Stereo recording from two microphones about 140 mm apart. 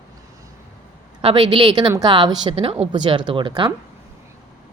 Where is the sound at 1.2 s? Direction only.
40° right (ahead or behind).